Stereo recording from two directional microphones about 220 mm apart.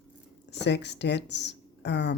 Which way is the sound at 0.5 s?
50° left (ahead or behind).